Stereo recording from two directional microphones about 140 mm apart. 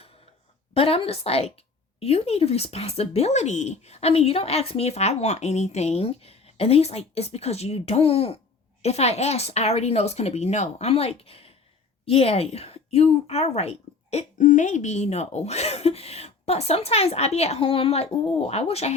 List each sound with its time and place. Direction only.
0.7 s a woman's voice: 45° left (ahead or behind)
14.3 s speech: 65° left (ahead or behind)